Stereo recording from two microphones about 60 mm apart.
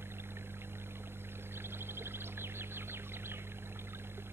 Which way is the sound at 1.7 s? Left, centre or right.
Right.